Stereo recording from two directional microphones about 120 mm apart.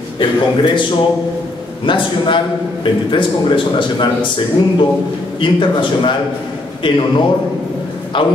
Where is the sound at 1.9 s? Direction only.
45° left (ahead or behind).